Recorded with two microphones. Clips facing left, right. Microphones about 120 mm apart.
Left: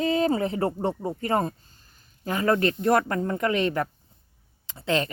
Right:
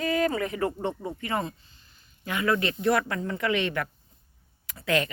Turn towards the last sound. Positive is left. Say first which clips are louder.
# left 1 dB
turn(degrees=30)  # may be behind; listen again after turning